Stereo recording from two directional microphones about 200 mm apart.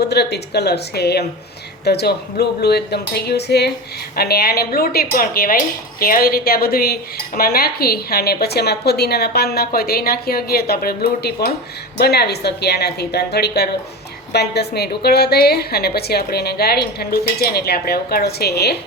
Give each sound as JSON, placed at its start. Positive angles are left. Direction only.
{"t": 0.0, "sound": "a woman's voice", "side_deg": 55}